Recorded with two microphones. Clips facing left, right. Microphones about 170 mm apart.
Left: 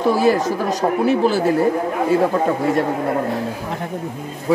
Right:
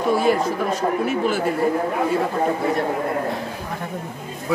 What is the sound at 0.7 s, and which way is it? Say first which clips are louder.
Speech: left 4 dB; 35° left (ahead or behind).